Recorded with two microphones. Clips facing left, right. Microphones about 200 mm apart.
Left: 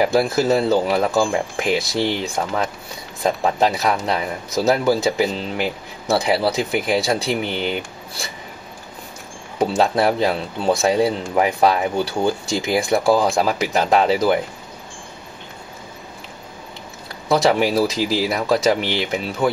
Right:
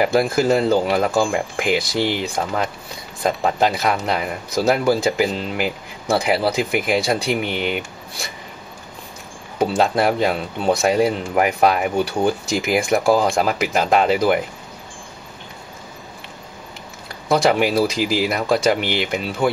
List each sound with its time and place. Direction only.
0.0 s speech: centre (ahead or behind)
9.6 s speech: centre (ahead or behind)
10.9 s speech: 30° left (ahead or behind)
11.2 s speech: 5° right (ahead or behind)
17.3 s speech: centre (ahead or behind)